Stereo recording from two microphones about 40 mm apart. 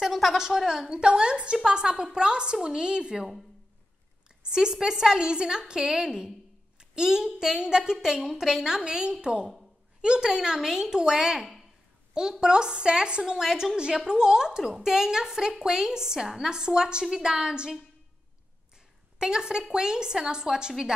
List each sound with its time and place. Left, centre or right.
0.0 s a sound: centre
0.4 s a woman's voice: centre
4.5 s a woman's voice: centre
13.4 s a woman's voice: centre
19.1 s a woman's voice: centre